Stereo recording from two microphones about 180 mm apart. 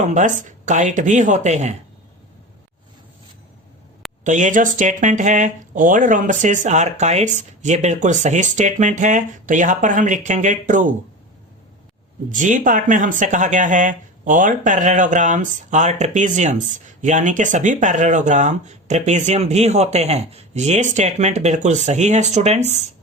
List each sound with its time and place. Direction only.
0.0 s speech: 40° right (ahead or behind)
4.2 s speech: 45° right (ahead or behind)
12.3 s speech: 45° right (ahead or behind)